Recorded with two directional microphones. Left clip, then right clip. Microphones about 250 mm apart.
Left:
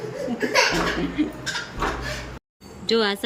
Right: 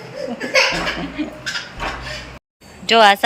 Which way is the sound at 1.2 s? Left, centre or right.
Centre.